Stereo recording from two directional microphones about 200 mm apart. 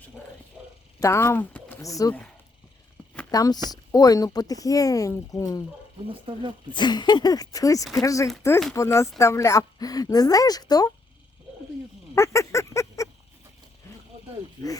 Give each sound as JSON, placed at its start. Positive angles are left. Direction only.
{"t": 0.9, "sound": "speech", "side_deg": 15}
{"t": 3.3, "sound": "speech", "side_deg": 15}
{"t": 6.3, "sound": "speech", "side_deg": -25}
{"t": 6.7, "sound": "speech", "side_deg": 20}
{"t": 12.1, "sound": "a sound", "side_deg": 15}